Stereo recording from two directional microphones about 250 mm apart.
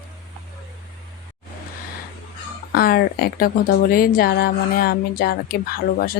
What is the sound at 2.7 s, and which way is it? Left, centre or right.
A woman's voice, left.